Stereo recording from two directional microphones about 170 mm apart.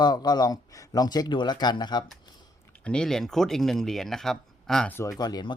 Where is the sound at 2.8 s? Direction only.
5° left (ahead or behind).